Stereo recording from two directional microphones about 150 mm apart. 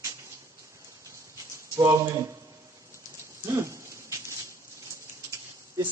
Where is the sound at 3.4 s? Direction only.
20° right (ahead or behind).